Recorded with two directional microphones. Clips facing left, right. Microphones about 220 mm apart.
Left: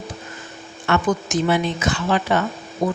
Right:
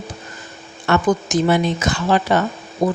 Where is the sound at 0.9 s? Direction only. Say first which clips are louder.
Right 3 dB; 40° right (ahead or behind).